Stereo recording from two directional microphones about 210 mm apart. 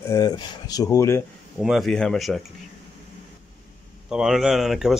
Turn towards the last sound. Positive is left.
turn(degrees=0)  # may be behind; listen again after turning